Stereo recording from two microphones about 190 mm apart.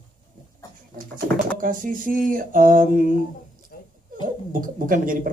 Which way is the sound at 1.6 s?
45° right (ahead or behind).